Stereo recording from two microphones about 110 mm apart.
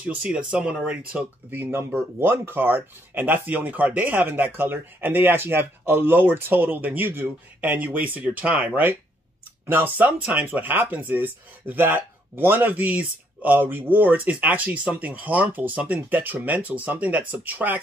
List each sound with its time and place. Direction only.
0.1 s speech: 10° right (ahead or behind)